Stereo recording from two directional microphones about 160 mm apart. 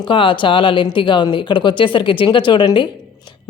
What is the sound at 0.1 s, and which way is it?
A woman's voice, 30° left (ahead or behind).